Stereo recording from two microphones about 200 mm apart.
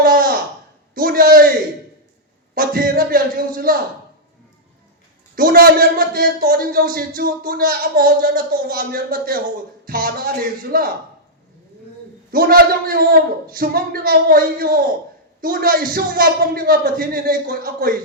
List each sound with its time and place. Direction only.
0.0 s a sound: 45° right (ahead or behind)
2.6 s a man's voice: 45° right (ahead or behind)
5.3 s a man's voice: 45° right (ahead or behind)
12.3 s a man's voice: 45° right (ahead or behind)